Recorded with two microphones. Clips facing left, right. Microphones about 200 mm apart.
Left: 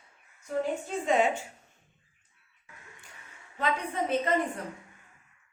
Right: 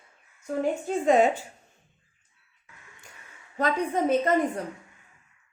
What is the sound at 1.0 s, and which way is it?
Speech, 40° right (ahead or behind).